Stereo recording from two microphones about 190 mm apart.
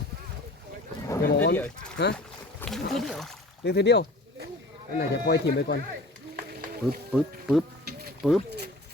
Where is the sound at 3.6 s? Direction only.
65° left (ahead or behind).